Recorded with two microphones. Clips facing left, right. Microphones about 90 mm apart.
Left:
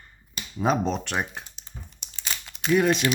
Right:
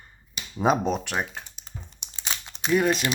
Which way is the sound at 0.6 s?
15° right (ahead or behind).